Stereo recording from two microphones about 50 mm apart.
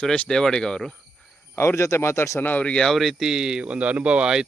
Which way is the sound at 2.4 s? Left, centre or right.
Left.